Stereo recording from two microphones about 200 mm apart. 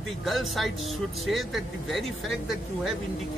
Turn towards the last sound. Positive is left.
turn(degrees=0)  # may be behind; listen again after turning